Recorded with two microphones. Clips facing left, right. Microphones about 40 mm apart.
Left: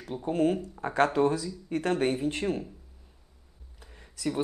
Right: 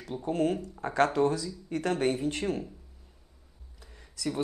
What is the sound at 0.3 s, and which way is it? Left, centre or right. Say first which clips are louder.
Speech: left 2 dB; left.